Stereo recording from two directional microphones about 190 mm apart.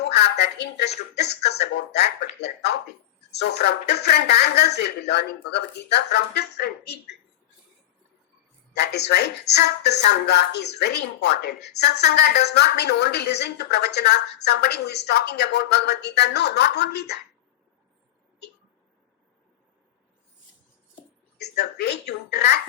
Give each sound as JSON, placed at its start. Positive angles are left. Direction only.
{"t": 0.1, "sound": "speech", "side_deg": 60}
{"t": 8.7, "sound": "speech", "side_deg": 60}
{"t": 21.3, "sound": "speech", "side_deg": 60}